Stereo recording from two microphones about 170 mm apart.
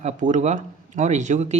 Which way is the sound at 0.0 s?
45° right (ahead or behind).